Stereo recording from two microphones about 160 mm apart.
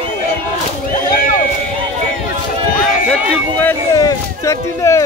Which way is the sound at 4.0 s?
20° left (ahead or behind).